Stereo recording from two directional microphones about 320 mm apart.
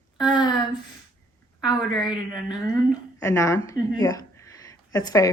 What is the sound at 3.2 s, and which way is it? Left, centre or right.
A woman's voice, centre.